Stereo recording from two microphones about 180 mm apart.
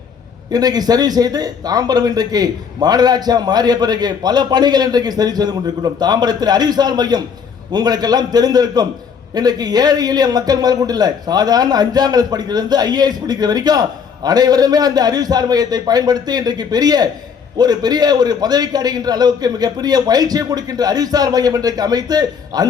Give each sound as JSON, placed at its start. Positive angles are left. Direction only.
{"t": 0.5, "sound": "a man's voice", "side_deg": -20}